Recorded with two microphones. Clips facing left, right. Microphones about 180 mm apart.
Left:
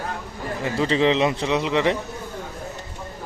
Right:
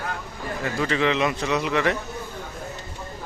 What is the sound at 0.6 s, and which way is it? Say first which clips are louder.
A man's voice: left 4 dB; 25° left (ahead or behind).